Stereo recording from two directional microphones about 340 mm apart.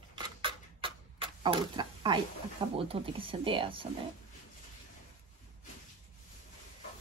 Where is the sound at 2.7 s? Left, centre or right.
Centre.